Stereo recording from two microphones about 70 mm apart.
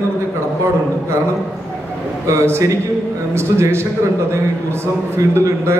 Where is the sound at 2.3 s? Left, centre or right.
Right.